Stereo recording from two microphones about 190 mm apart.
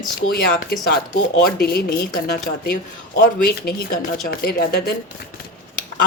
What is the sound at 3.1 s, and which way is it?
A woman's voice, 50° left (ahead or behind).